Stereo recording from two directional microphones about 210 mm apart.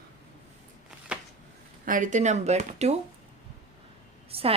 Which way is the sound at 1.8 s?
40° right (ahead or behind).